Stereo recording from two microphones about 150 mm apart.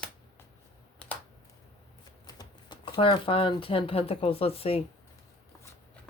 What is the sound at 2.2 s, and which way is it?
Speech, 30° left (ahead or behind).